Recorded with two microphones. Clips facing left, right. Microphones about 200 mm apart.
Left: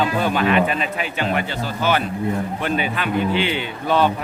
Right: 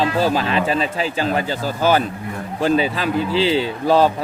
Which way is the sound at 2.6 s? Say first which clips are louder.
Right 10 dB; 35° right (ahead or behind).